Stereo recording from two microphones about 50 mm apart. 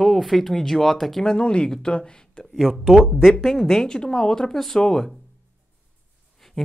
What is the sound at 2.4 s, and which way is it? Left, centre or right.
Speech, centre.